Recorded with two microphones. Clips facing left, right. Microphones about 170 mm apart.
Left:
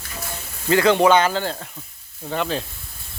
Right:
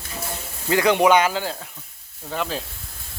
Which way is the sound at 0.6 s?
15° right (ahead or behind).